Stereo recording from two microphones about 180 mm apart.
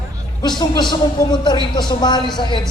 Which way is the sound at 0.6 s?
25° left (ahead or behind).